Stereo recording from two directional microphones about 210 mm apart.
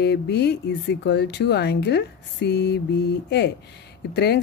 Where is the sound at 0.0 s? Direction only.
50° left (ahead or behind).